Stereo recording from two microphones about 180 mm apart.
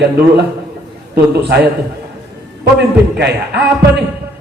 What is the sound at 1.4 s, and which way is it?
Speech, 65° right (ahead or behind).